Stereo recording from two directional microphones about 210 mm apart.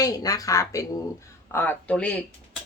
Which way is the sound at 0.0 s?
15° left (ahead or behind).